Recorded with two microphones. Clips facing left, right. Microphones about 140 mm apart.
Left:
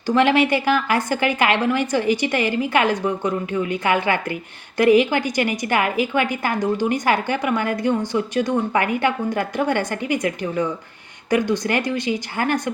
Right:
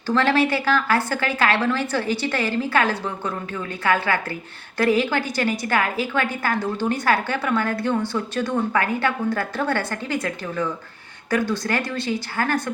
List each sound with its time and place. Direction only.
0.1 s a woman's voice: 15° left (ahead or behind)